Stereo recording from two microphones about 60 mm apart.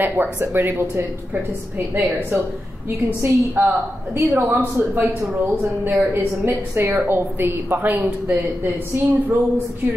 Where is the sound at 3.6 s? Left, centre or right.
Right.